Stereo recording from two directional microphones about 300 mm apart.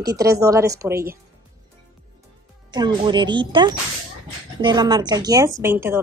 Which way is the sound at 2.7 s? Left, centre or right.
Centre.